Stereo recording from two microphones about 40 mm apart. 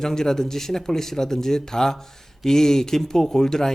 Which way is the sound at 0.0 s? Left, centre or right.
Centre.